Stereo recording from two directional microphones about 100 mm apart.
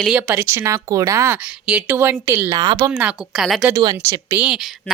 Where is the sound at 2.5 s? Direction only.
40° right (ahead or behind).